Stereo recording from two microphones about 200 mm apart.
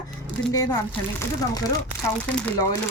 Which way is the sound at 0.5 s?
20° left (ahead or behind).